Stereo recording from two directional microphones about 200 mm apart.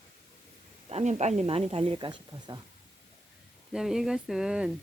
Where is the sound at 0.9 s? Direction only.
30° right (ahead or behind).